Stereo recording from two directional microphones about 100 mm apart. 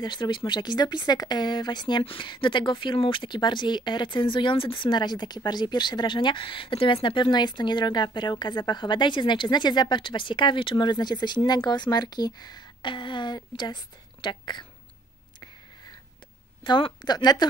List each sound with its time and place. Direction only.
0.0 s speech: 50° left (ahead or behind)
16.6 s speech: 50° left (ahead or behind)